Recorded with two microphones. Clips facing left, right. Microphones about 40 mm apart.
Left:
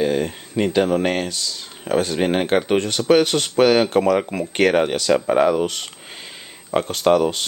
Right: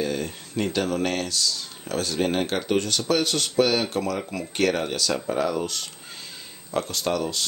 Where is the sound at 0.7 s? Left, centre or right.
Left.